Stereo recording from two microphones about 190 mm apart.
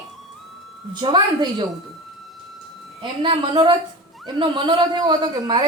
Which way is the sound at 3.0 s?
25° right (ahead or behind).